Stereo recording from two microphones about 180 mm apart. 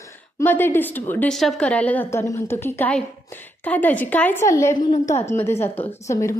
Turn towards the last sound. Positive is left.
turn(degrees=15)  # may be behind; listen again after turning